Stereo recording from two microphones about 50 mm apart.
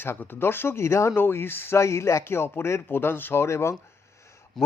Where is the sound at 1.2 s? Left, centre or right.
Left.